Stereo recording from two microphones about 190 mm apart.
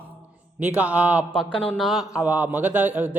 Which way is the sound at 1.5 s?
30° left (ahead or behind).